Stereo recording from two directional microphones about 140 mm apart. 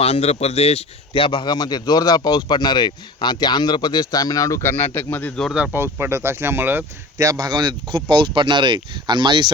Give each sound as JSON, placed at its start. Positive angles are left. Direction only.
{"t": 0.0, "sound": "a man's voice", "side_deg": 45}
{"t": 5.4, "sound": "speech", "side_deg": 0}
{"t": 5.7, "sound": "speech", "side_deg": -15}
{"t": 7.3, "sound": "speech", "side_deg": -30}